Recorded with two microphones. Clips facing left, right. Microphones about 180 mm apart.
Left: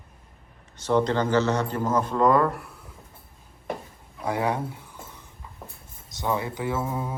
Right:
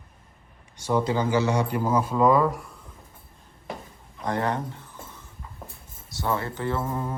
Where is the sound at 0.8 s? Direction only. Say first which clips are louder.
Left 1 dB; 10° right (ahead or behind).